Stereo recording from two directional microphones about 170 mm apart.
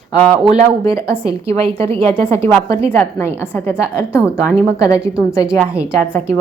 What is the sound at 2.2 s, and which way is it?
A woman's voice, 15° left (ahead or behind).